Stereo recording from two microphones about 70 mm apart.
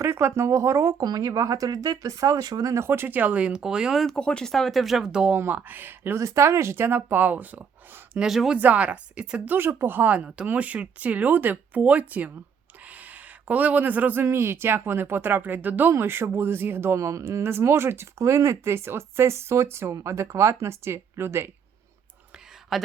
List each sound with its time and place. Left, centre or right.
0.0 s speech: right
1.0 s speech: right
2.7 s speech: right; by 4.0 s centre
4.0 s speech: centre
5.5 s speech: right
6.1 s speech: right
8.2 s speech: centre
8.5 s speech: centre
9.6 s speech: right
13.5 s speech: right
19.9 s speech: right
22.7 s speech: centre